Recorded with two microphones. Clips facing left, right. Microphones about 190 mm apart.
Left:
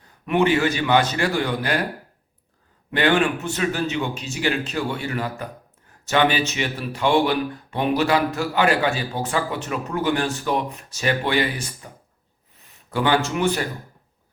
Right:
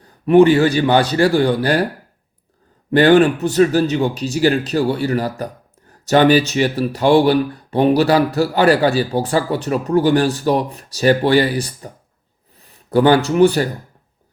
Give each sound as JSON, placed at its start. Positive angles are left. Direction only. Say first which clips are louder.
{"t": 0.3, "sound": "speech", "louder": "right 9 dB", "side_deg": -35}
{"t": 2.9, "sound": "speech", "louder": "right 9 dB", "side_deg": -35}
{"t": 12.9, "sound": "speech", "louder": "right 8 dB", "side_deg": -40}